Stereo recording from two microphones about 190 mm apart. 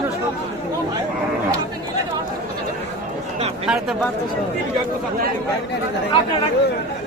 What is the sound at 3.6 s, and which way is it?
Speech, 5° right (ahead or behind).